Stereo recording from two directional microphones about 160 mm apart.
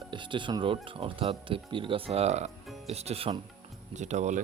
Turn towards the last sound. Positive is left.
turn(degrees=-50)  # may be behind; listen again after turning